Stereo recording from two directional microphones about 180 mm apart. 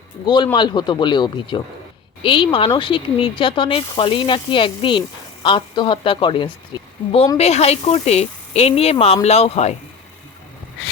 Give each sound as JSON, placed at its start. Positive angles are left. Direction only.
{"t": 0.5, "sound": "speech", "side_deg": 25}